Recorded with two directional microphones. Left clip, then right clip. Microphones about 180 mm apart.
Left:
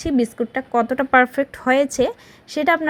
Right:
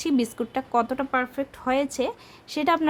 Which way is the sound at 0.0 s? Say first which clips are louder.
Left 5 dB; 5° left (ahead or behind).